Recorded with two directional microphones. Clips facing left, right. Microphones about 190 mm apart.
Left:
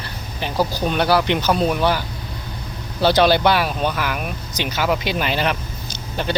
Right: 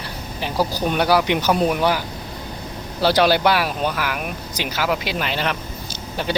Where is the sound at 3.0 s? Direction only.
10° right (ahead or behind).